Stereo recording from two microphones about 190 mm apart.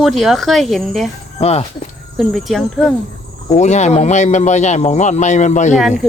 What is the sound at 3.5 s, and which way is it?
A man's voice, 40° left (ahead or behind).